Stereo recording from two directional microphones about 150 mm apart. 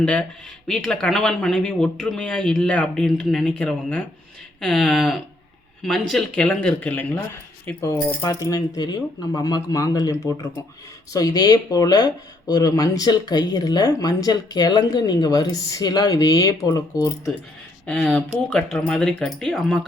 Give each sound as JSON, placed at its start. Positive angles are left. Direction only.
{"t": 0.0, "sound": "speech", "side_deg": 5}
{"t": 17.8, "sound": "speech", "side_deg": 5}